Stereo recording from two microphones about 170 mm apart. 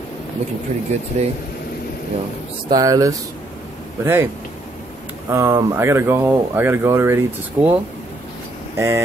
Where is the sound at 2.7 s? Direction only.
20° right (ahead or behind).